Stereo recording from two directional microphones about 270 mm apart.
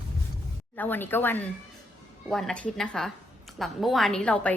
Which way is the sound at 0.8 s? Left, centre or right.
Centre.